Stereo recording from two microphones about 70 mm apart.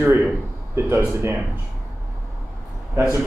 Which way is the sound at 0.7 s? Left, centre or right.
Right.